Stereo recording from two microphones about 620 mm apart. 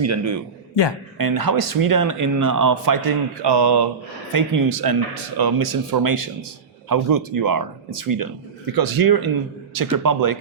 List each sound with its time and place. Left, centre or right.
0.0 s a man's voice: right